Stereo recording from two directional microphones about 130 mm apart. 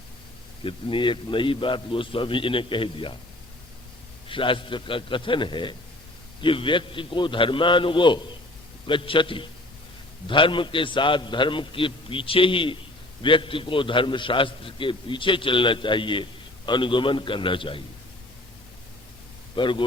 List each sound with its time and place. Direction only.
0.6 s a man's voice: 40° left (ahead or behind)
4.3 s a man's voice: 40° left (ahead or behind)
19.5 s a man's voice: 40° left (ahead or behind)